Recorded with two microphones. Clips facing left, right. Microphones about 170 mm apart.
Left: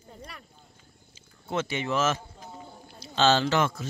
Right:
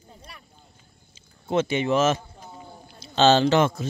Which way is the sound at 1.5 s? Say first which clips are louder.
Right 7 dB; 20° right (ahead or behind).